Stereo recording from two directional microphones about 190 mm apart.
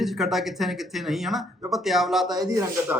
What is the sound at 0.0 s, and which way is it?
Speech, centre (ahead or behind).